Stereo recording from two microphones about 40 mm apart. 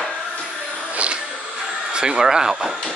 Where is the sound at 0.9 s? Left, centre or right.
Right.